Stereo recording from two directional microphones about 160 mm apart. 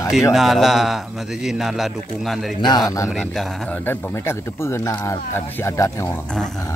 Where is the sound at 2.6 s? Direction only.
25° left (ahead or behind).